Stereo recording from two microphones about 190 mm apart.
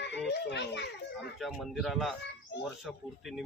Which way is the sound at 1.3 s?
Centre (ahead or behind).